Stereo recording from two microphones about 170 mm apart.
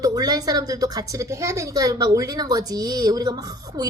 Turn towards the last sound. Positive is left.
turn(degrees=-20)  # may be behind; listen again after turning